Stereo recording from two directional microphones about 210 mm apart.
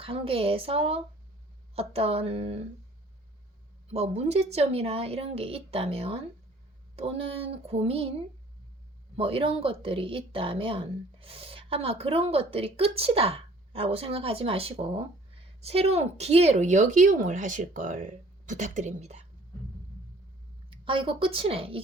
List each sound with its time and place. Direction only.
0.0 s speech: 25° right (ahead or behind)
3.8 s speech: 30° right (ahead or behind)
9.1 s speech: 25° right (ahead or behind)
20.7 s a woman's voice: 25° right (ahead or behind)